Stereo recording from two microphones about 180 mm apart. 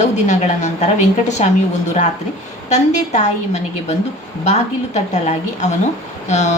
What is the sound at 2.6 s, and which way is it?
A woman's voice, 40° left (ahead or behind).